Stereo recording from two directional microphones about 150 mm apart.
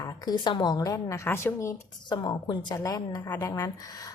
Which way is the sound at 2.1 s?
30° left (ahead or behind).